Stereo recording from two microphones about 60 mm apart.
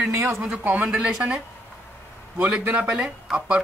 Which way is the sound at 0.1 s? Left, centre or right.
Right.